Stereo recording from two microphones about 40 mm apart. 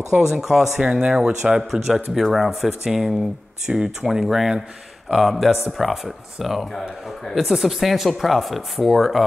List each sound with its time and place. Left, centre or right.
0.1 s speech: centre
0.7 s speech: right
1.4 s speech: centre
3.6 s speech: centre